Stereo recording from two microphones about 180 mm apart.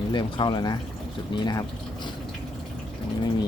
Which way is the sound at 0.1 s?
25° left (ahead or behind).